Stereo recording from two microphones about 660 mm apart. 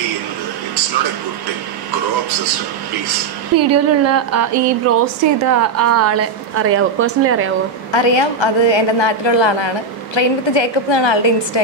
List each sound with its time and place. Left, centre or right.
3.5 s speech: right
7.9 s a woman's voice: left